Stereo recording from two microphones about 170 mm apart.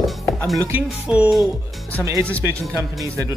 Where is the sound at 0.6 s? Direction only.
10° right (ahead or behind).